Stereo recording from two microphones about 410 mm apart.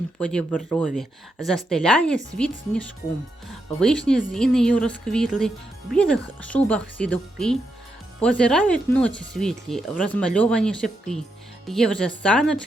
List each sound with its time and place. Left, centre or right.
0.2 s speech: centre